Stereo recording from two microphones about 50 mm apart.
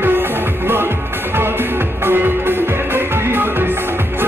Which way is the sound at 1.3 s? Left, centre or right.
Right.